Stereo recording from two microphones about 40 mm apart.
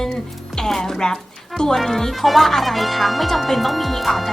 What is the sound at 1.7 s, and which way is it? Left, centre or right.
Speech, centre.